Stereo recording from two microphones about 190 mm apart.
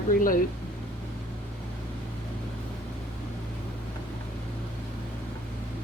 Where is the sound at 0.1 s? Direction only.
45° left (ahead or behind).